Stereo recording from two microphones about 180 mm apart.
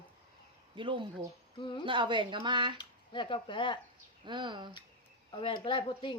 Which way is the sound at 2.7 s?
25° left (ahead or behind).